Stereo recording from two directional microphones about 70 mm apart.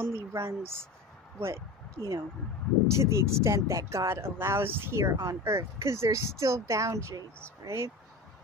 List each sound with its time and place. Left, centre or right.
0.0 s speech: right